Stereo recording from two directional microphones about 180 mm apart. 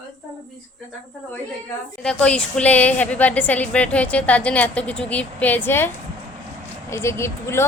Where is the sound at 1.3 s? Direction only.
5° left (ahead or behind).